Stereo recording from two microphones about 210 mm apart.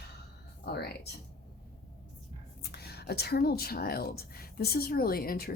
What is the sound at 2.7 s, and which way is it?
Speech, 50° left (ahead or behind).